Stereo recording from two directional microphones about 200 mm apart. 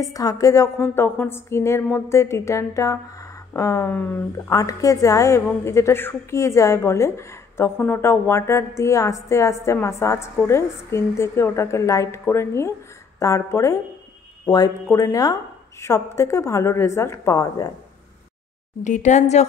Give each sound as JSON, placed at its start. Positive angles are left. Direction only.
{"t": 0.0, "sound": "a woman's voice", "side_deg": 15}
{"t": 18.8, "sound": "speech", "side_deg": 35}